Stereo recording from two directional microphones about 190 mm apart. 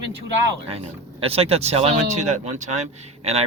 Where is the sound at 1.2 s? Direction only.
30° right (ahead or behind).